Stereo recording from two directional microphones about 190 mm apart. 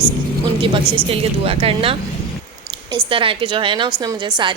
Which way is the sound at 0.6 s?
30° right (ahead or behind).